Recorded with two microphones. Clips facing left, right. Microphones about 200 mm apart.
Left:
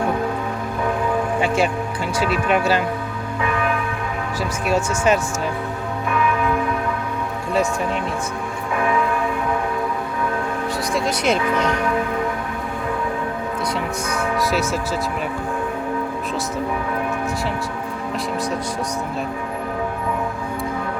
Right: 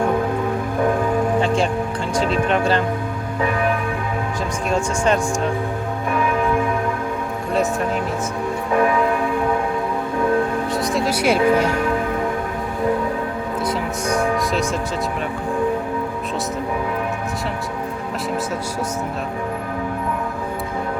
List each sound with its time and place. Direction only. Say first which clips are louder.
1.4 s speech: right 1 dB; 10° left (ahead or behind)
4.7 s speech: left 1 dB; 5° left (ahead or behind)
7.5 s speech: right 1 dB; centre (ahead or behind)
10.9 s speech: right 1 dB; 5° right (ahead or behind)